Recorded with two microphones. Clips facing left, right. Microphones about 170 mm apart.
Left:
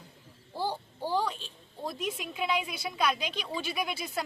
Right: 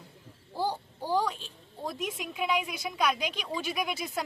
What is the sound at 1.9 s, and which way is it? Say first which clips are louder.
A woman's voice: even; 15° right (ahead or behind).